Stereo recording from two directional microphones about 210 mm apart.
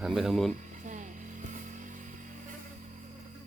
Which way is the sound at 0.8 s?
35° right (ahead or behind).